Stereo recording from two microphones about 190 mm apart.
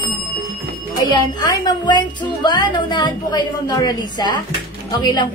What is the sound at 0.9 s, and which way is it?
Speech, 20° left (ahead or behind).